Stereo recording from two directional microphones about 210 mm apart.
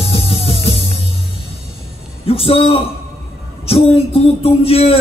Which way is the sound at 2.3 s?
25° left (ahead or behind).